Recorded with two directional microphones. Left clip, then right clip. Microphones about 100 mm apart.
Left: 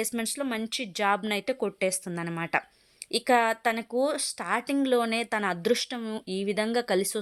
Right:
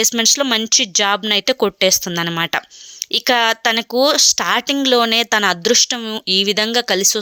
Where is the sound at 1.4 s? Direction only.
45° right (ahead or behind).